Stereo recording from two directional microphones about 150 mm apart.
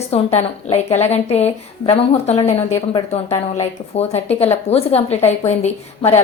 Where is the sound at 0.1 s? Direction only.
45° left (ahead or behind).